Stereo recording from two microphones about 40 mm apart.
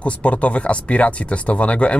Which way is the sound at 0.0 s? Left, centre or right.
Left.